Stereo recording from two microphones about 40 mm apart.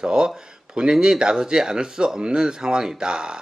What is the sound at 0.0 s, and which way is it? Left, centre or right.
Speech, centre.